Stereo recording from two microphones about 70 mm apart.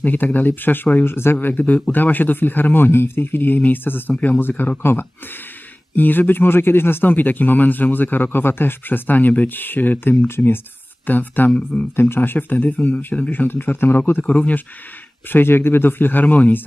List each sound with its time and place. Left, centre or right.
0.0 s speech: left
1.0 s speech: left; by 14.6 s centre
15.2 s speech: left